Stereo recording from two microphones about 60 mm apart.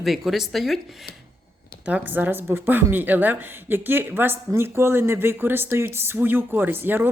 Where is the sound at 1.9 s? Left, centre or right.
Right.